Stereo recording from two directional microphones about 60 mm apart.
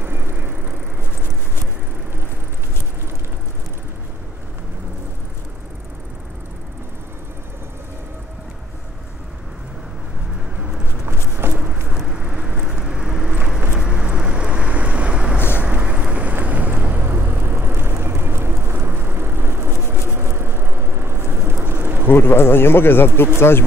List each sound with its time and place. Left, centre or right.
0.0 s vehicle: right
11.1 s a sound: right
11.9 s vehicle: centre; by 22.0 s right
22.0 s speech: left